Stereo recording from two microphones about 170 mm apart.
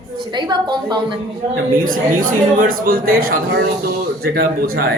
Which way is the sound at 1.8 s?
55° right (ahead or behind).